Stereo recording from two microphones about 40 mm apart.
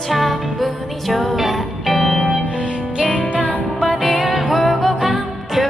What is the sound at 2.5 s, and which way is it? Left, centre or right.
Music, right.